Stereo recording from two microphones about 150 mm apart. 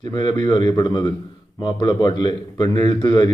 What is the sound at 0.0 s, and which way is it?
A man's voice, 30° left (ahead or behind).